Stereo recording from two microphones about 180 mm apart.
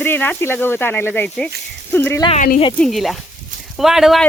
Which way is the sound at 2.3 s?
50° left (ahead or behind).